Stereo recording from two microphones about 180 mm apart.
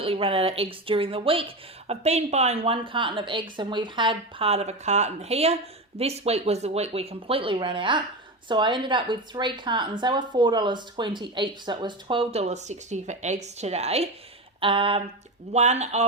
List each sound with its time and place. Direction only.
0.0 s speech: 30° right (ahead or behind)